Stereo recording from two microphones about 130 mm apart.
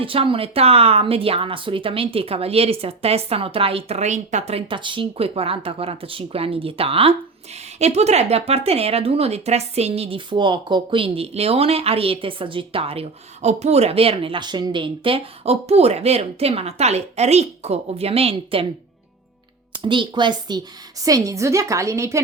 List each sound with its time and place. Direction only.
0.0 s speech: 45° right (ahead or behind)
19.8 s a woman's voice: 40° right (ahead or behind); by 22.2 s 20° right (ahead or behind)